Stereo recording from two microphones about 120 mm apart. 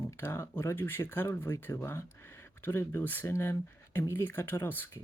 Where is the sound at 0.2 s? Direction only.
20° left (ahead or behind).